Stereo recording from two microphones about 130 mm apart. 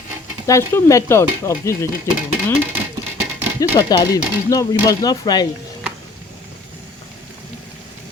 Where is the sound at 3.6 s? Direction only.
30° left (ahead or behind).